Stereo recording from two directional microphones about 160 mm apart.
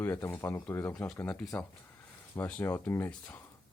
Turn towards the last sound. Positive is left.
turn(degrees=10)  # may be behind; listen again after turning